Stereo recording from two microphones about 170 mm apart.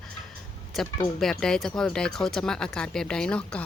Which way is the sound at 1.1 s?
5° left (ahead or behind).